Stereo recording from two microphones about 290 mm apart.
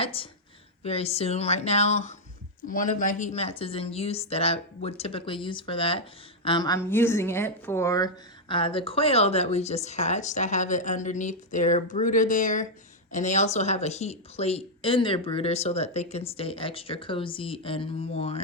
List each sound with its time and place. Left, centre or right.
0.0 s a woman's voice: centre